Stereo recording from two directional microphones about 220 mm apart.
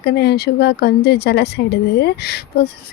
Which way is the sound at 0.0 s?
50° left (ahead or behind).